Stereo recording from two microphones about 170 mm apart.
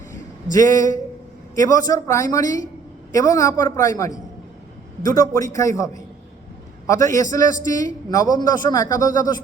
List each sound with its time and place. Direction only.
0.5 s a man's voice: 20° left (ahead or behind)